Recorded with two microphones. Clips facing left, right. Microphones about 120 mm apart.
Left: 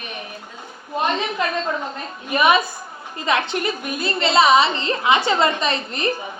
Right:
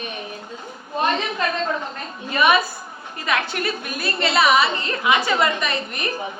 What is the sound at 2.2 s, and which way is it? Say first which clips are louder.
A woman's voice: left 1 dB; 20° left (ahead or behind).